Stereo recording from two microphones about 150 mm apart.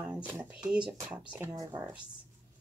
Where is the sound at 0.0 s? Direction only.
10° right (ahead or behind).